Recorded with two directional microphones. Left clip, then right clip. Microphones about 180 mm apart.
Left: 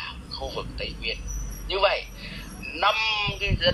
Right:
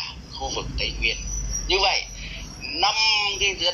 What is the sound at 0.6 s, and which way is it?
Speech, 20° right (ahead or behind).